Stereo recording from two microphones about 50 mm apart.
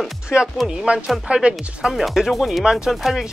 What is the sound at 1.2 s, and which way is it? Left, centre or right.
Speech, centre.